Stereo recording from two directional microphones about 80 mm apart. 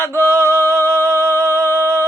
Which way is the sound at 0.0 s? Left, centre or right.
Left.